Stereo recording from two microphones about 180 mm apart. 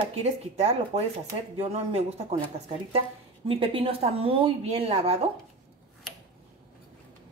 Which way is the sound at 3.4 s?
30° right (ahead or behind).